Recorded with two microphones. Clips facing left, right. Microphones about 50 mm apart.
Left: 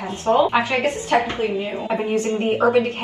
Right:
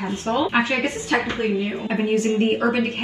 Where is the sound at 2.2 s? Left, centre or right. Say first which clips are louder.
Left 1 dB; right.